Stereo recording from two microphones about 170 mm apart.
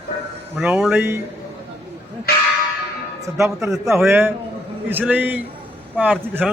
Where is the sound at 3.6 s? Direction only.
15° right (ahead or behind).